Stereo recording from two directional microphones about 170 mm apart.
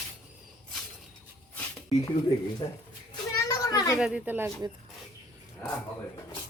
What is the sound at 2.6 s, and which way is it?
Speech, 30° left (ahead or behind).